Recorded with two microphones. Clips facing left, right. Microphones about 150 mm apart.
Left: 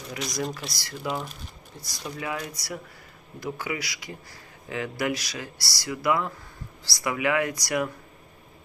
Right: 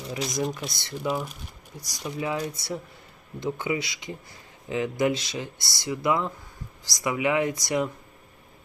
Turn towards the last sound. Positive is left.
turn(degrees=-20)  # may be behind; listen again after turning